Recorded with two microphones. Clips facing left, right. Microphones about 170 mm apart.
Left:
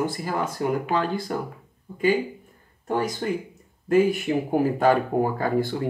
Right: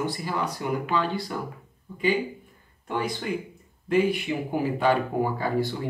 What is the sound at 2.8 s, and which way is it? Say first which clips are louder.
Speech: left 4 dB; 45° left (ahead or behind).